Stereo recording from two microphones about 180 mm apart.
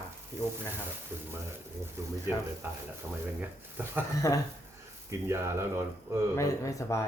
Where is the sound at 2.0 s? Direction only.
15° right (ahead or behind).